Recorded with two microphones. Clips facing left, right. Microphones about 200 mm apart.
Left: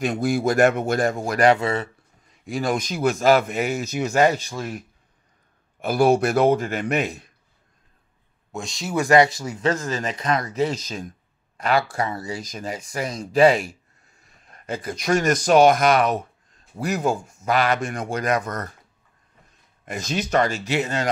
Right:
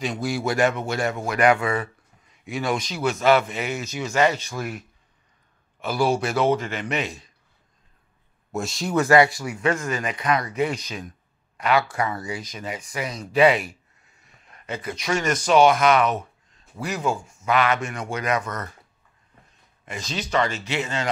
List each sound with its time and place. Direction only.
0.0 s speech: 50° left (ahead or behind); by 2.8 s 35° left (ahead or behind)
2.8 s speech: 50° left (ahead or behind)
4.1 s speech: 40° left (ahead or behind)
5.9 s a man's voice: 55° left (ahead or behind)
8.5 s speech: centre (ahead or behind)
8.9 s speech: 15° left (ahead or behind)
9.4 s speech: 40° left (ahead or behind)
9.9 s speech: 25° left (ahead or behind)
10.4 s speech: 40° left (ahead or behind)
12.2 s speech: 40° left (ahead or behind)
19.8 s speech: 50° left (ahead or behind)